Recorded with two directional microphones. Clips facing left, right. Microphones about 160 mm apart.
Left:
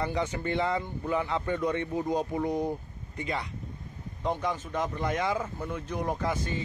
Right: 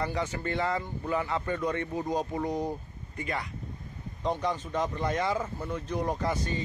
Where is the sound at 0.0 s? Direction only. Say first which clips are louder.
Left 1 dB; 15° left (ahead or behind).